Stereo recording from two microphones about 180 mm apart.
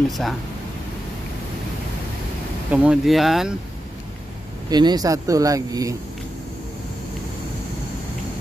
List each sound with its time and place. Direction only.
0.1 s speech: centre (ahead or behind)
2.7 s speech: 5° right (ahead or behind)
4.6 s speech: 20° right (ahead or behind)